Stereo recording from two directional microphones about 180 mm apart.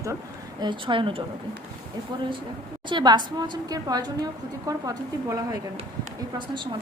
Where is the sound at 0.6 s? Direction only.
25° right (ahead or behind).